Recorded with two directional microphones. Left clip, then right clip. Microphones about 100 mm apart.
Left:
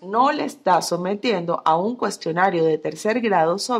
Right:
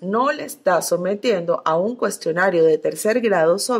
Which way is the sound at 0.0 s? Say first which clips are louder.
Left 1 dB; 25° right (ahead or behind).